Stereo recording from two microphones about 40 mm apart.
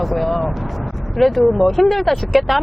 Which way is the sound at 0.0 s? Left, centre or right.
Centre.